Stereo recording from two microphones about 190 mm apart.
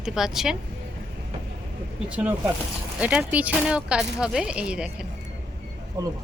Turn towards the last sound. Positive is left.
turn(degrees=-20)  # may be behind; listen again after turning